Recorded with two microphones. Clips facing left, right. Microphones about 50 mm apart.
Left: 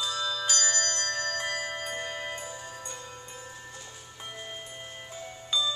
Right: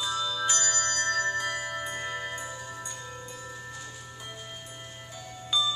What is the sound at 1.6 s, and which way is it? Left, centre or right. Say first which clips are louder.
Music: right 1 dB; left.